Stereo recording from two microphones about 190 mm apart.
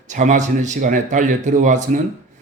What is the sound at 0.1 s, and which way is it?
Speech, 40° right (ahead or behind).